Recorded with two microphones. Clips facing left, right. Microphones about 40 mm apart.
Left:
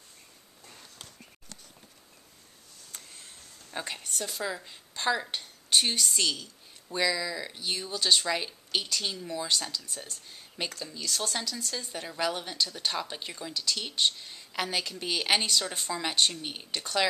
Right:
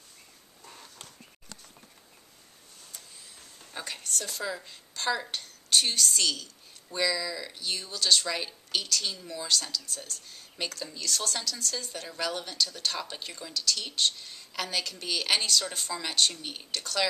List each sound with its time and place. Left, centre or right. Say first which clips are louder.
3.7 s a woman's voice: left 1 dB; centre